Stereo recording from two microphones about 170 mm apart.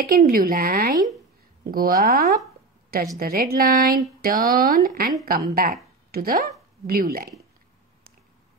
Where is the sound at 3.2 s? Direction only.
60° right (ahead or behind).